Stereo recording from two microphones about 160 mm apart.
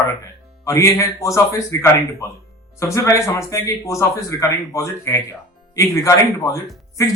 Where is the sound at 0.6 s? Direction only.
15° left (ahead or behind).